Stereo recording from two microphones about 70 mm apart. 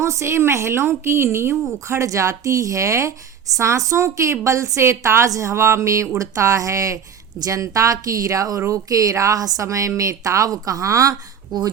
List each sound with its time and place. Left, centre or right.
0.0 s a woman's voice: right
11.5 s speech: right